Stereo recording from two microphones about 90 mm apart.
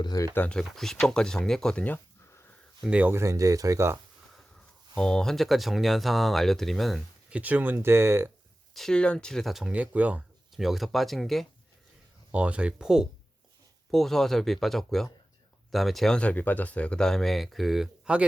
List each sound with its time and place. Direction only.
0.0 s speech: 45° left (ahead or behind)
0.3 s speech: 15° left (ahead or behind)
2.8 s speech: 15° right (ahead or behind)
3.1 s speech: 30° right (ahead or behind)
4.9 s speech: 10° left (ahead or behind)
7.3 s speech: 15° right (ahead or behind)
8.7 s speech: 5° left (ahead or behind)
9.7 s speech: 15° right (ahead or behind)
10.5 s speech: 5° right (ahead or behind)
12.3 s speech: 15° right (ahead or behind)
13.9 s speech: 5° left (ahead or behind)